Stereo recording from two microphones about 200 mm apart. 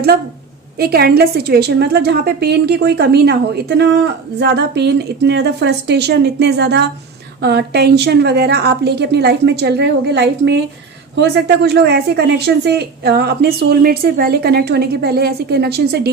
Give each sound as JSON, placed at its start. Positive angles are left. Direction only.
{"t": 0.8, "sound": "a woman's voice", "side_deg": -50}